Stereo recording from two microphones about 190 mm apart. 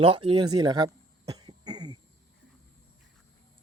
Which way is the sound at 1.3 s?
20° right (ahead or behind).